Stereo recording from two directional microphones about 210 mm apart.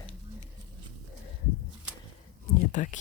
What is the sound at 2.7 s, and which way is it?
Speech, 35° left (ahead or behind).